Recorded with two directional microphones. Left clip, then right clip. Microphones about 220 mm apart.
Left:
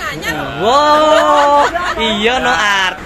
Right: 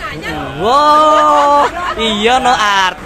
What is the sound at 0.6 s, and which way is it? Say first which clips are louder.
Speech: right 1 dB; 10° right (ahead or behind).